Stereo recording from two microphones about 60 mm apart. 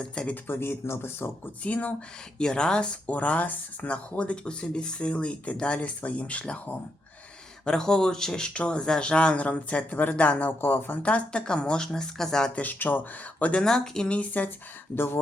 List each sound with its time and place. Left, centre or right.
0.0 s speech: centre
0.4 s speech: left
1.6 s speech: left
2.4 s speech: centre
7.6 s speech: centre
10.6 s speech: left
11.0 s speech: left
12.5 s speech: left
13.6 s speech: centre
14.9 s speech: left